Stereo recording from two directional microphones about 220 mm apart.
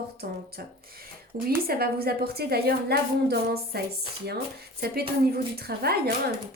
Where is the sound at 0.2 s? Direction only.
45° right (ahead or behind).